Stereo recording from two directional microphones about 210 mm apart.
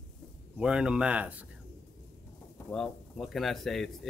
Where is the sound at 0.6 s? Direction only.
5° right (ahead or behind).